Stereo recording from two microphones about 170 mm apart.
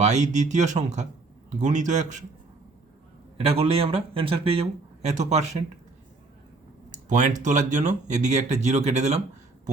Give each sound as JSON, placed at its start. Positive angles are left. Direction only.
{"t": 0.0, "sound": "speech", "side_deg": -45}
{"t": 3.3, "sound": "speech", "side_deg": -35}
{"t": 6.9, "sound": "speech", "side_deg": -45}